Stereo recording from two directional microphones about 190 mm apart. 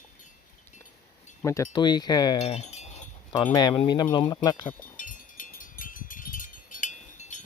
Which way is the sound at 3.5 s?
25° left (ahead or behind).